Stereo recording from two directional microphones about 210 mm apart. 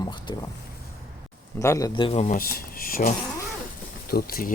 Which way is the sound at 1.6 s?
15° left (ahead or behind).